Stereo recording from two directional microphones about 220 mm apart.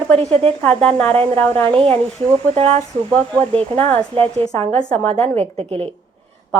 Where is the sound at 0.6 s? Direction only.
5° left (ahead or behind).